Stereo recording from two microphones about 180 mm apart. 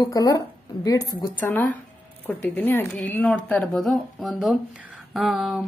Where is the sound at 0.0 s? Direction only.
20° left (ahead or behind).